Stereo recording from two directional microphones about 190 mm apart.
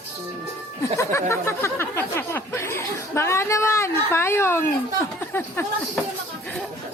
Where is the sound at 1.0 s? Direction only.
15° left (ahead or behind).